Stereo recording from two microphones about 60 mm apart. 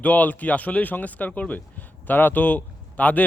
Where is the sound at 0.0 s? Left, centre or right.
Left.